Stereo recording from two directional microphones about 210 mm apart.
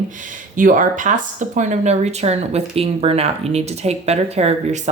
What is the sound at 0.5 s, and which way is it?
Speech, 40° right (ahead or behind).